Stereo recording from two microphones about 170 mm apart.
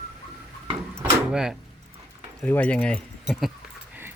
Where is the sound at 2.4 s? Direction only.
10° left (ahead or behind).